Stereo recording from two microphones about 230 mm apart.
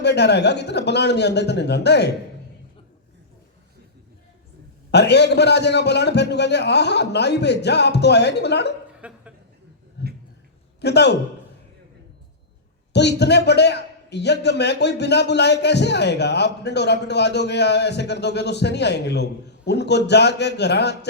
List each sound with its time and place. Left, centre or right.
0.0 s a man's voice: left
4.9 s a man's voice: left
9.0 s a sound: centre
10.0 s a sound: left
10.8 s a man's voice: left
12.9 s a man's voice: left